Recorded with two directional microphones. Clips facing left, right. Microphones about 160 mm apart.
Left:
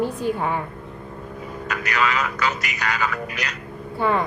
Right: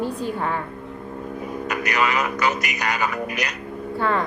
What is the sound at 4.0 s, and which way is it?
Speech, 15° left (ahead or behind).